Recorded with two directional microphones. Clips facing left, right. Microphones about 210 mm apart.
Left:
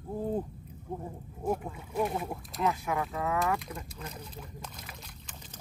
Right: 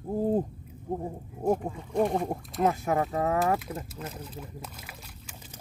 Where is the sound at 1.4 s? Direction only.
40° right (ahead or behind).